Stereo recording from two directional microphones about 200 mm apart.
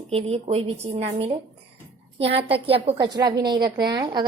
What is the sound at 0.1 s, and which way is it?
A woman's voice, 30° right (ahead or behind).